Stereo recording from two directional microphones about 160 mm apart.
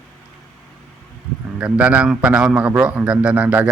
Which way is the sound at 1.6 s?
10° right (ahead or behind).